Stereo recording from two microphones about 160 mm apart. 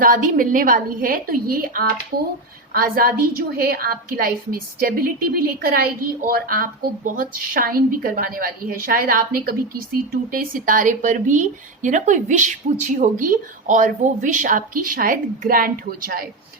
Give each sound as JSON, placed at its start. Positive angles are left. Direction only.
{"t": 0.0, "sound": "a woman's voice", "side_deg": -55}